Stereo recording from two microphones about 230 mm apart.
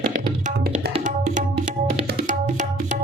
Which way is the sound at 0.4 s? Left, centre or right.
Right.